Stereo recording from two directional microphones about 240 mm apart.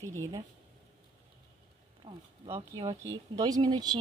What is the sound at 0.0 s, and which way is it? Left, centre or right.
Speech, centre.